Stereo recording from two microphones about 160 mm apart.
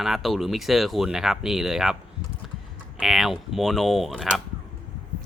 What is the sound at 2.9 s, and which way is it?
Speech, centre (ahead or behind).